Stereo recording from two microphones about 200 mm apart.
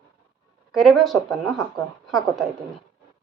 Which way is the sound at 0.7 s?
Centre (ahead or behind).